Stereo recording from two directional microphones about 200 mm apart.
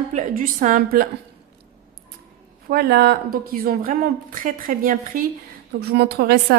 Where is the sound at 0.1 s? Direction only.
40° right (ahead or behind).